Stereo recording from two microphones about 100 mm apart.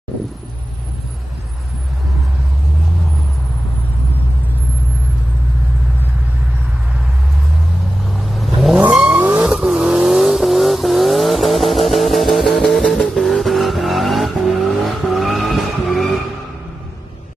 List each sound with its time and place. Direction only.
8.1 s vehicle: centre (ahead or behind); by 9.5 s 15° right (ahead or behind)
9.5 s vehicle: 5° right (ahead or behind)